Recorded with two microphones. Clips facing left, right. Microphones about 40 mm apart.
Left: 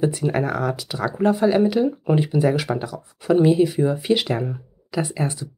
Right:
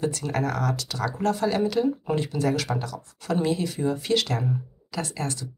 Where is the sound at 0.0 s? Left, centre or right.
Centre.